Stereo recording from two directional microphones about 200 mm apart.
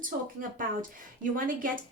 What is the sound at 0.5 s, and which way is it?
Speech, 45° right (ahead or behind).